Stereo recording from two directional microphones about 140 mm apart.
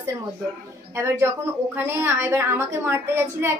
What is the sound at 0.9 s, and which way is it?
A woman's voice, 20° right (ahead or behind).